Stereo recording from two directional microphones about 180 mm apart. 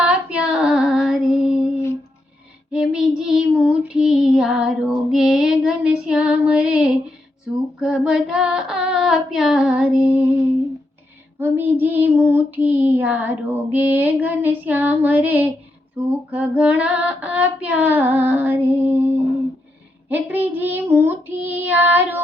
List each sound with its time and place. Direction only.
0.1 s female singing: 5° right (ahead or behind)
2.7 s child singing: 5° right (ahead or behind)
7.8 s female singing: 5° right (ahead or behind)
11.3 s child singing: 10° right (ahead or behind)